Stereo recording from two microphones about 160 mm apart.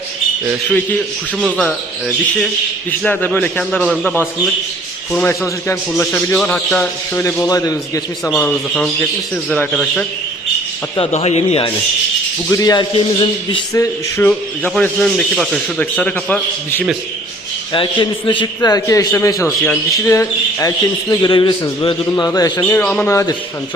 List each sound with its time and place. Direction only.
1.4 s a man's voice: centre (ahead or behind); by 8.0 s 20° left (ahead or behind)
8.2 s a man's voice: 5° left (ahead or behind)
10.9 s speech: 40° left (ahead or behind)
12.5 s speech: 20° left (ahead or behind)
13.7 s a man's voice: 15° left (ahead or behind)
18.3 s speech: 25° left (ahead or behind)
22.6 s a man's voice: 10° left (ahead or behind)